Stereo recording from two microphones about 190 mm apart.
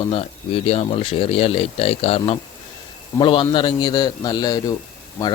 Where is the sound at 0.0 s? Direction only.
30° left (ahead or behind).